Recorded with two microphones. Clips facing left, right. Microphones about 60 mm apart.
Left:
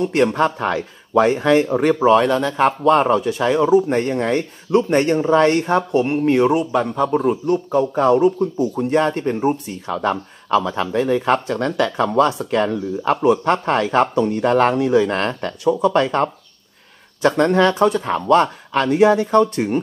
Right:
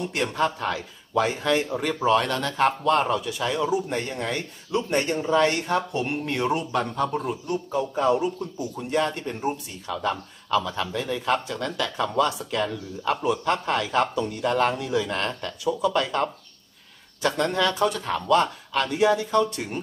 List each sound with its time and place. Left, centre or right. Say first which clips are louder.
0.0 s speech: left 8 dB; left
2.0 s a man's voice: left 6 dB; left
7.1 s a man's voice: left 10 dB; left
7.4 s a man's voice: left 9 dB; left
18.3 s speech: left 6 dB; left